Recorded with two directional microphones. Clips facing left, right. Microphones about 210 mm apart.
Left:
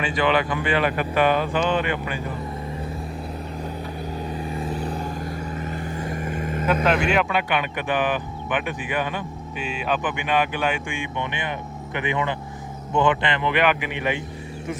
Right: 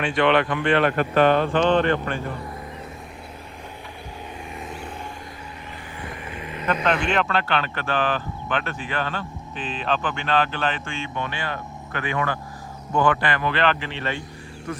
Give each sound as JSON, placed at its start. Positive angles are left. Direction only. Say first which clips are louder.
{"t": 0.0, "sound": "speech", "louder": "right 2 dB", "side_deg": 0}
{"t": 4.5, "sound": "vehicle", "louder": "left 7 dB", "side_deg": 35}
{"t": 6.2, "sound": "vehicle", "louder": "left 7 dB", "side_deg": 45}
{"t": 6.8, "sound": "speech", "louder": "even", "side_deg": 5}